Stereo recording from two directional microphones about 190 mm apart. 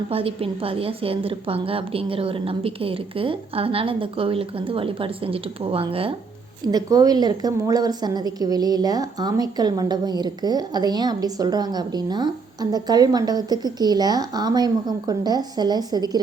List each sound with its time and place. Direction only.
0.1 s a woman's voice: 30° right (ahead or behind)